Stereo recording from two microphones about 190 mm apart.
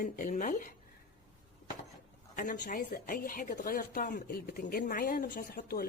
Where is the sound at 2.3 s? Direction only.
45° left (ahead or behind).